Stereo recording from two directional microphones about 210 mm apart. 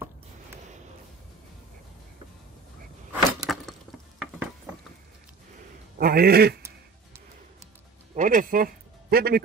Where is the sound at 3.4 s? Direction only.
Centre (ahead or behind).